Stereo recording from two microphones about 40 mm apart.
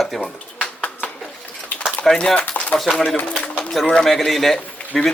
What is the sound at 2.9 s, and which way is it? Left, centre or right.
A man's voice, centre.